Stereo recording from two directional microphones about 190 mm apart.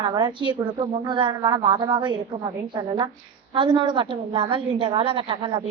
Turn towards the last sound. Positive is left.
turn(degrees=-25)  # may be behind; listen again after turning